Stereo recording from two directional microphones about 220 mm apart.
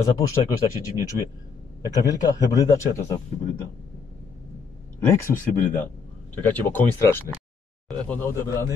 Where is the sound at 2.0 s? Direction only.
15° left (ahead or behind).